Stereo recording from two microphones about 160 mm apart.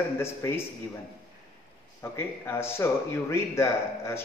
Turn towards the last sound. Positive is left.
turn(degrees=15)  # may be behind; listen again after turning